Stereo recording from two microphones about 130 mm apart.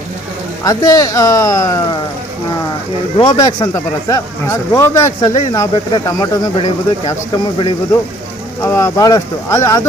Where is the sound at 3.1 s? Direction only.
35° left (ahead or behind).